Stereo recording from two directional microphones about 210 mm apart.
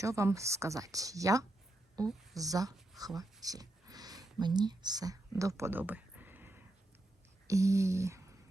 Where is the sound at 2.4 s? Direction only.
15° right (ahead or behind).